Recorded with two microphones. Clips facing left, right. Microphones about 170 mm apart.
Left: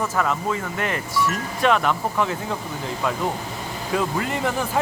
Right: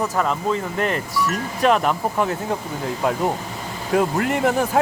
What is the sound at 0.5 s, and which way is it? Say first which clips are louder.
Speech: right 3 dB; 40° right (ahead or behind).